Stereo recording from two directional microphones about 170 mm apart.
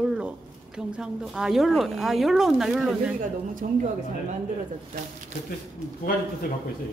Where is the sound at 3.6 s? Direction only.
50° right (ahead or behind).